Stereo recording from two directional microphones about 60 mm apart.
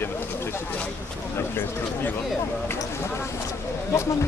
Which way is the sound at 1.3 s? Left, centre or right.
Left.